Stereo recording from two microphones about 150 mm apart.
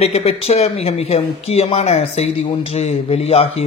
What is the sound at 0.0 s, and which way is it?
Speech, 45° left (ahead or behind).